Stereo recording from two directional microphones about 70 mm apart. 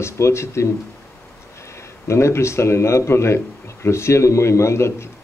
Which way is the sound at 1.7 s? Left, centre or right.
Left.